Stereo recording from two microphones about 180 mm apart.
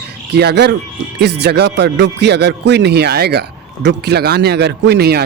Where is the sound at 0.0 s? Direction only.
65° right (ahead or behind).